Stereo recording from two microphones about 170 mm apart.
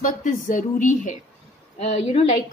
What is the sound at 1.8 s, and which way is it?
Speech, 40° left (ahead or behind).